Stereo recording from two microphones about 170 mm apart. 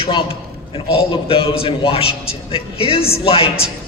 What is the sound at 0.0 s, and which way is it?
A man's voice, 30° left (ahead or behind).